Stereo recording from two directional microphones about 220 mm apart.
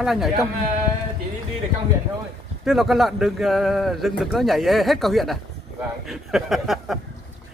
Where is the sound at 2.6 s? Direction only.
Centre (ahead or behind).